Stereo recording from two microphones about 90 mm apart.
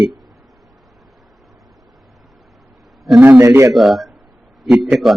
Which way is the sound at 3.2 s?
25° right (ahead or behind).